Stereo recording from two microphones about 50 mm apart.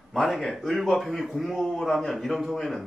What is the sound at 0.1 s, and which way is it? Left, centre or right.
A man's voice, centre.